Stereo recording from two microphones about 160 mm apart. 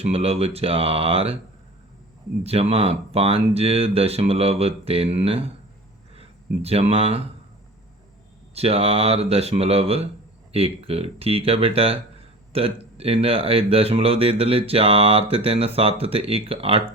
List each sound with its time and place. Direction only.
0.0 s speech: 40° right (ahead or behind)
2.4 s speech: 40° right (ahead or behind)
8.5 s speech: 40° right (ahead or behind)